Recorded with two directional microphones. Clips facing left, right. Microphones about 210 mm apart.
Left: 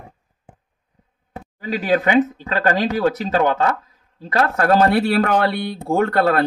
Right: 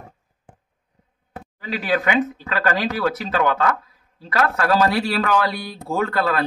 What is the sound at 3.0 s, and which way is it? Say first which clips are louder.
Speech: left 4 dB; 40° left (ahead or behind).